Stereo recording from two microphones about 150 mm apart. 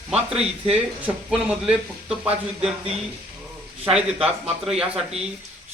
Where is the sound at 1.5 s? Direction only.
10° right (ahead or behind).